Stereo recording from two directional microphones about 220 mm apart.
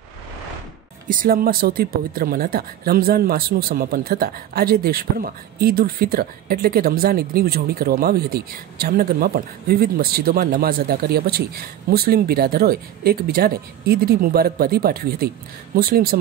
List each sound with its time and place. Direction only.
1.0 s speech: 40° right (ahead or behind)